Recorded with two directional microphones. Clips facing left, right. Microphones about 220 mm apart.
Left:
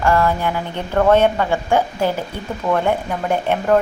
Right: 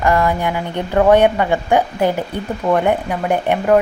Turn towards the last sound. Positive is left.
turn(degrees=-10)  # may be behind; listen again after turning